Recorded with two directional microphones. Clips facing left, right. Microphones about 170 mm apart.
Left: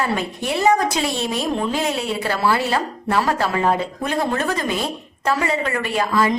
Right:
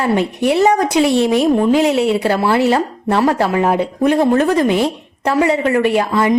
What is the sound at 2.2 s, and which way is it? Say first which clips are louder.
Speech: right 6 dB; 20° right (ahead or behind).